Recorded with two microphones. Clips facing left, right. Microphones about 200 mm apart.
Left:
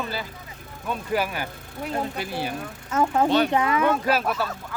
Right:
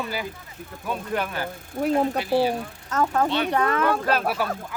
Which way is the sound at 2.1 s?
50° left (ahead or behind).